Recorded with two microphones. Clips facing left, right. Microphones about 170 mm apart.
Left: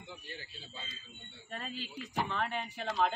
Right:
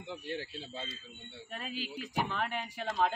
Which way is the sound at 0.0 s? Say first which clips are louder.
Right 9 dB; 75° right (ahead or behind).